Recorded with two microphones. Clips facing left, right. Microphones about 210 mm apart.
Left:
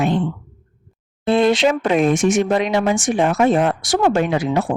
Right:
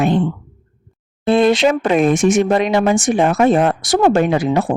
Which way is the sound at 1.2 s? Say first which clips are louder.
Right 2 dB; 50° right (ahead or behind).